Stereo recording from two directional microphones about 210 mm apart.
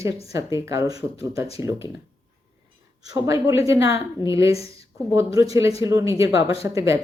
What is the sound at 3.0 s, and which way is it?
A woman's voice, 15° right (ahead or behind).